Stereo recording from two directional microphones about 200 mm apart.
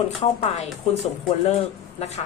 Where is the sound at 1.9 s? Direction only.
30° left (ahead or behind).